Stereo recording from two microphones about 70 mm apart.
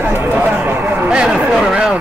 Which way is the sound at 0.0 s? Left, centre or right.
Right.